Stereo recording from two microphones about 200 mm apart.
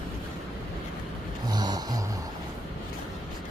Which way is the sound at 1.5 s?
20° right (ahead or behind).